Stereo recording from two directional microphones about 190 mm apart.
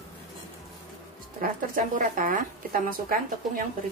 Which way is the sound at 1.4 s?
45° right (ahead or behind).